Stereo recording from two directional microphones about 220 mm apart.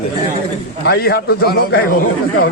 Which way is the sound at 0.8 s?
45° left (ahead or behind).